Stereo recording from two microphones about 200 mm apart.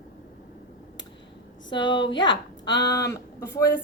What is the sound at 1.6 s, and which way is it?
A woman's voice, 25° left (ahead or behind).